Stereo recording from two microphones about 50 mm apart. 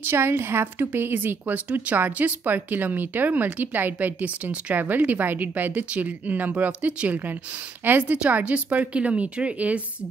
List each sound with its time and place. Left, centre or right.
0.0 s a woman's voice: right
1.7 s speech: right
7.8 s speech: right
8.2 s a woman's voice: right